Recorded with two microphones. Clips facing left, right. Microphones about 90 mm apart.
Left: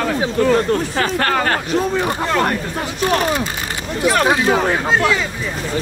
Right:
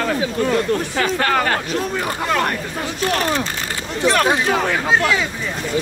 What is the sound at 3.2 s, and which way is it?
Speech, 10° left (ahead or behind).